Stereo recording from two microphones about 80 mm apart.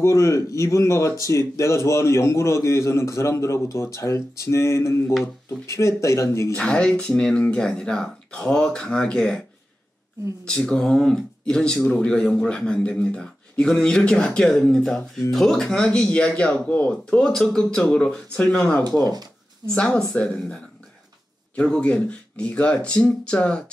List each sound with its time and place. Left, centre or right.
0.0 s a man's voice: left
6.5 s speech: centre
10.4 s speech: centre